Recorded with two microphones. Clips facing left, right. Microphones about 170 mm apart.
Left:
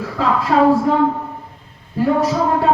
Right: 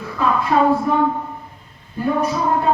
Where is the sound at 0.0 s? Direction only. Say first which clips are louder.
Left 1 dB; 90° left.